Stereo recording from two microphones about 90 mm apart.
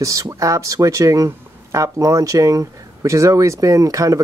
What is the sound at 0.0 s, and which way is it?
Speech, 40° right (ahead or behind).